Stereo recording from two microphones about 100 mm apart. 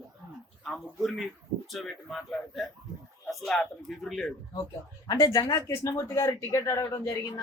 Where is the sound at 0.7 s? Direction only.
Centre (ahead or behind).